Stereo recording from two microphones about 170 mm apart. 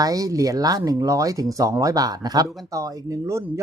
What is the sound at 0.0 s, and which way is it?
Speech, 20° right (ahead or behind).